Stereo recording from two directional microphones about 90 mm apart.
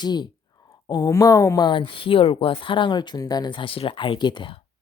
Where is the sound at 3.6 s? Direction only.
80° left; by 4.6 s 65° left (ahead or behind).